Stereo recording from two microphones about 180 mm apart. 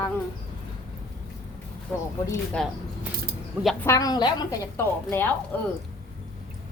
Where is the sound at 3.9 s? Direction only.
20° left (ahead or behind).